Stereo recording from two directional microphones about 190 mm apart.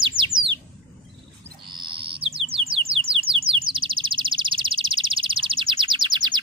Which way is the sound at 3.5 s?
30° right (ahead or behind).